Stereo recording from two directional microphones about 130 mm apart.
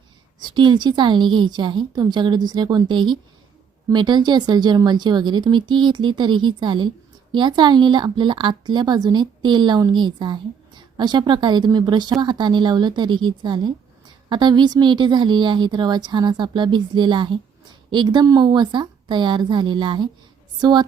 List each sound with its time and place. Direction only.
0.3 s a woman's voice: 35° right (ahead or behind)